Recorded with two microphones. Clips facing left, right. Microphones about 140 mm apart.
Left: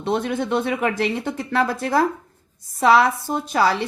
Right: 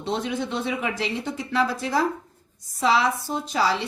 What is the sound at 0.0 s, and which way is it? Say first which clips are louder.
A woman's voice: left 4 dB; 55° left (ahead or behind).